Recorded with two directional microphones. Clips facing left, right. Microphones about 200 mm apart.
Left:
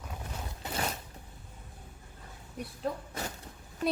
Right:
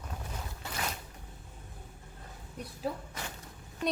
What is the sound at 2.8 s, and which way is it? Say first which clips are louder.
Speech: left 1 dB; 5° right (ahead or behind).